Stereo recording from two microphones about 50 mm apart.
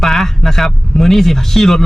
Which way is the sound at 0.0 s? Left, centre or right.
Centre.